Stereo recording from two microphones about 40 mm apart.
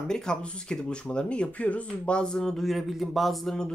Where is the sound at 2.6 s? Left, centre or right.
Centre.